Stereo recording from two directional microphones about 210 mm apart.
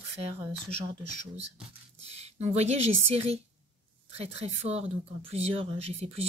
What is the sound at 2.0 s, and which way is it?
A woman's voice, 30° right (ahead or behind).